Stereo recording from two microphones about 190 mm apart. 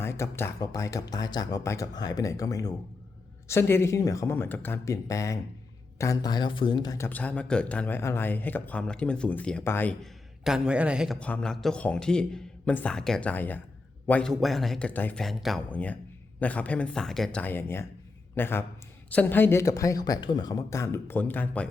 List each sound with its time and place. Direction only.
0.0 s a man's voice: 15° left (ahead or behind)
10.4 s a man's voice: 5° right (ahead or behind)